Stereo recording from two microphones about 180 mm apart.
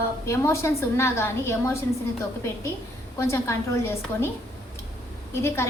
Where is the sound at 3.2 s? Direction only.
15° left (ahead or behind).